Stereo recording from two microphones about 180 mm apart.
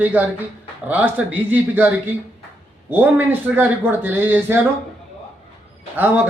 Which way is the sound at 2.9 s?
10° right (ahead or behind).